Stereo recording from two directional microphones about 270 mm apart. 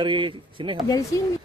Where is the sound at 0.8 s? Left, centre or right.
Centre.